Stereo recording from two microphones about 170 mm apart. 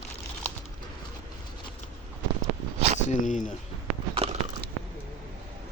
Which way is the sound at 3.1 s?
50° left (ahead or behind).